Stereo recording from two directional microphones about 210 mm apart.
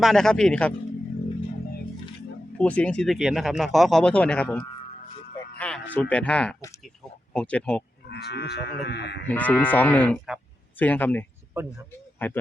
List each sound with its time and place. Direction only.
0.0 s speech: centre (ahead or behind)
2.6 s speech: 5° left (ahead or behind)
5.5 s a sound: 5° left (ahead or behind)
5.9 s speech: 5° left (ahead or behind)
8.1 s speech: 50° left (ahead or behind)
9.2 s speech: 10° left (ahead or behind)